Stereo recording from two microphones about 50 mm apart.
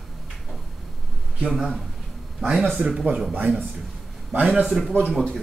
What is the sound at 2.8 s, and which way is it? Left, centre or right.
Speech, centre.